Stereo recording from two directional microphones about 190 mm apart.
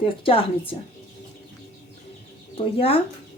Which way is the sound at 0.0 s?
30° left (ahead or behind).